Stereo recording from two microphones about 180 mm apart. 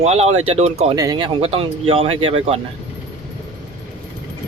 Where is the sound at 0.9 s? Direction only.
20° right (ahead or behind).